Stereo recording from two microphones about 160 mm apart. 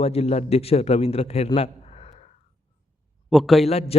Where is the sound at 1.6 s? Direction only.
40° left (ahead or behind).